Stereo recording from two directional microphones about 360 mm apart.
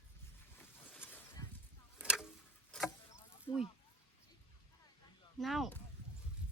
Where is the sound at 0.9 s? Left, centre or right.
Centre.